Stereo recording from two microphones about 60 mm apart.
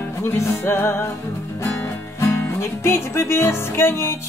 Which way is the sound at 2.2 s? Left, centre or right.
Left.